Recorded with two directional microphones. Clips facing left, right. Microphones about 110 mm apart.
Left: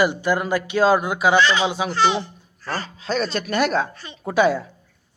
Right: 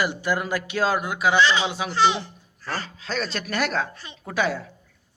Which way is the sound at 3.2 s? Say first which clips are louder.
Left 5 dB; centre (ahead or behind).